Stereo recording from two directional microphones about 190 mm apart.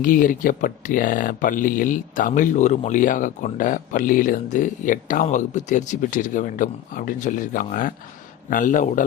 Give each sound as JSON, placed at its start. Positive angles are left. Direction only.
{"t": 0.0, "sound": "speech", "side_deg": 45}